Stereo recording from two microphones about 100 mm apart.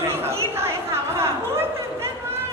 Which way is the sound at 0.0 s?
25° right (ahead or behind).